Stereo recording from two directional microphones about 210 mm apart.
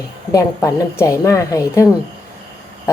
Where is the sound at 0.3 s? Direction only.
15° left (ahead or behind).